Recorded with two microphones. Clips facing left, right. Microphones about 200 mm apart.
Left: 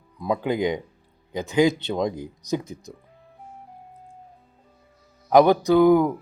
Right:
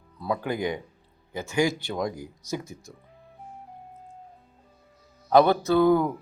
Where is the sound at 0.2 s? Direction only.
15° left (ahead or behind).